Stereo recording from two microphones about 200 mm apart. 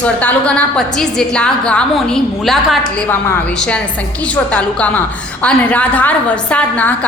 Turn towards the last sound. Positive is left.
turn(degrees=5)  # may be behind; listen again after turning